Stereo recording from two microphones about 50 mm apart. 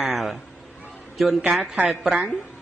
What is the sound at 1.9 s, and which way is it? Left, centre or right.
Speech, centre.